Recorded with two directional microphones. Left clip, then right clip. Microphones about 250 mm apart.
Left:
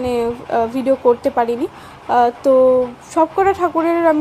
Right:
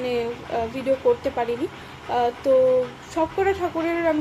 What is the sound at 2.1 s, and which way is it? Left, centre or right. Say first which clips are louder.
Speech: left 7 dB; left.